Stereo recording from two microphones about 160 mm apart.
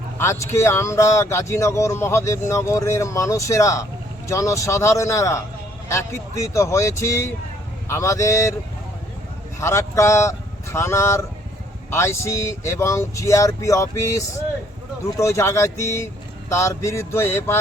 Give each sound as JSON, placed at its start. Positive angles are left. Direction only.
{"t": 0.2, "sound": "a man's voice", "side_deg": 15}
{"t": 9.6, "sound": "a man's voice", "side_deg": 20}